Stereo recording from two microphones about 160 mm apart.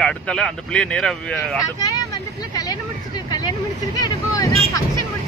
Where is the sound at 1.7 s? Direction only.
25° left (ahead or behind).